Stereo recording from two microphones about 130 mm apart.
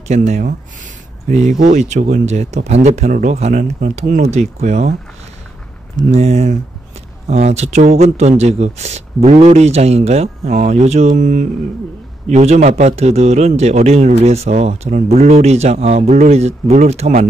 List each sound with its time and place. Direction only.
0.1 s speech: 65° right (ahead or behind)
1.6 s speech: 70° right (ahead or behind)
6.1 s speech: 55° right (ahead or behind); by 11.4 s 85° right
12.3 s speech: 60° right (ahead or behind)